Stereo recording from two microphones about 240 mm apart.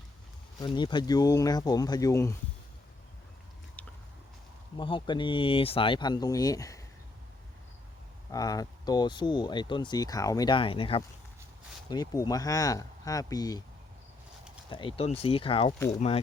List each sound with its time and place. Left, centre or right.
0.6 s speech: centre
3.8 s biting: centre
4.8 s speech: left
8.3 s speech: centre
14.7 s speech: left